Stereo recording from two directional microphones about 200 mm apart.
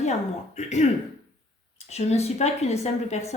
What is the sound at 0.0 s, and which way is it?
Speech, 35° left (ahead or behind).